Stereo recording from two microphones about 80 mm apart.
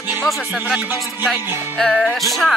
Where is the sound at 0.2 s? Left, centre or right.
Centre.